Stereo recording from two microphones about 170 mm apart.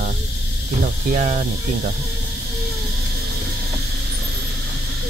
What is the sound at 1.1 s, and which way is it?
Speech, 45° right (ahead or behind).